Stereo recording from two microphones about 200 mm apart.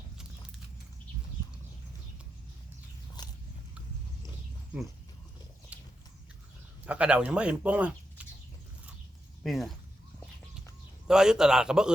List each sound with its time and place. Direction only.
3.2 s biting: 20° left (ahead or behind)
5.7 s horse: 5° right (ahead or behind)
6.8 s speech: 5° right (ahead or behind)
9.4 s a man's voice: centre (ahead or behind)
11.1 s a man's voice: 5° right (ahead or behind)